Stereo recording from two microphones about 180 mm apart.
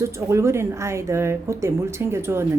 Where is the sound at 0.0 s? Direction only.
15° right (ahead or behind).